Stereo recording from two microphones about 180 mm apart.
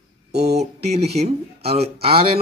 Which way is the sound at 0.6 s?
35° right (ahead or behind).